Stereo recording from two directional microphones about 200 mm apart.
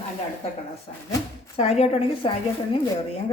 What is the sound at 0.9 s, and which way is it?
A woman's voice, 30° left (ahead or behind).